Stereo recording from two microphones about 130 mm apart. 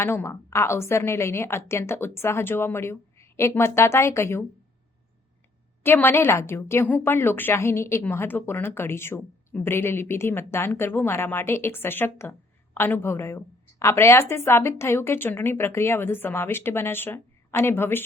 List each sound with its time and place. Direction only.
0.0 s a woman's voice: 20° left (ahead or behind)
5.8 s a woman's voice: 15° left (ahead or behind)